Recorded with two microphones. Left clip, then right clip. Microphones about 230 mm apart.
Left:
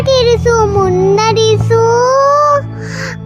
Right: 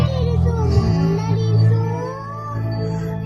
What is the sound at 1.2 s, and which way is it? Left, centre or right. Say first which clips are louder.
Music: left 16 dB; left.